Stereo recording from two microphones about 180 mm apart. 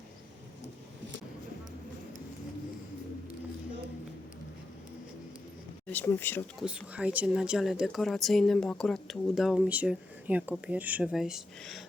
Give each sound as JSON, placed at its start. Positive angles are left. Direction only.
{"t": 5.9, "sound": "speech", "side_deg": 10}
{"t": 6.6, "sound": "a woman's voice", "side_deg": -5}